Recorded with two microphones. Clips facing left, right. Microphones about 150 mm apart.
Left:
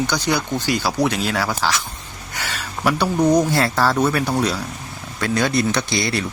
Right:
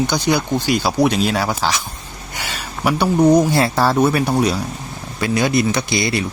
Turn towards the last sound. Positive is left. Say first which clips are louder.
# right 2 dB
turn(degrees=-10)  # may be behind; listen again after turning